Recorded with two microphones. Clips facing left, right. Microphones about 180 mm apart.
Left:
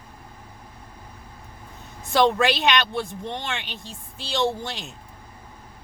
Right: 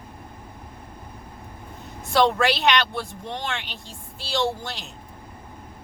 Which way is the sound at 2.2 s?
15° left (ahead or behind).